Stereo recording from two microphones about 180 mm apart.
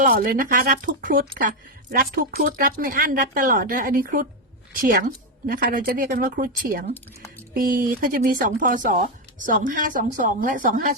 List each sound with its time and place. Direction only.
0.0 s speech: 50° right (ahead or behind)